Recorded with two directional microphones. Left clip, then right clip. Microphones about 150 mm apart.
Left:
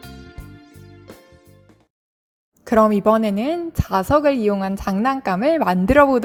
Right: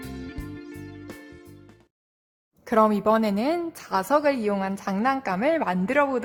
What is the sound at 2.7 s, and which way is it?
A woman's voice, 30° left (ahead or behind).